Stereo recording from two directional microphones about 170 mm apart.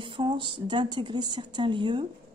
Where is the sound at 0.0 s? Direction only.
30° right (ahead or behind).